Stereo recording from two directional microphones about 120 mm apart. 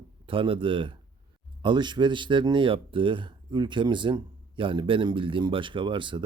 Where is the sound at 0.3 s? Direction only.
45° right (ahead or behind).